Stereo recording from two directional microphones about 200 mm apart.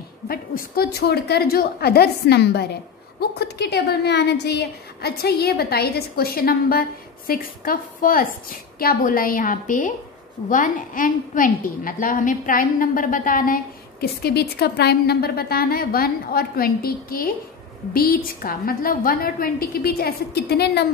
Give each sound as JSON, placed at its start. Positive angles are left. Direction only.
{"t": 0.3, "sound": "a woman's voice", "side_deg": 50}
{"t": 14.2, "sound": "a woman's voice", "side_deg": 55}